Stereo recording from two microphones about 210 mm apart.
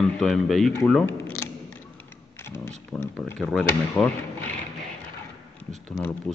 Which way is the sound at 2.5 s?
10° left (ahead or behind).